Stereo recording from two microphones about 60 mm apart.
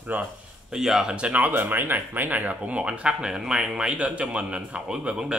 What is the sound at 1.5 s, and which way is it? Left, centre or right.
Speech, right.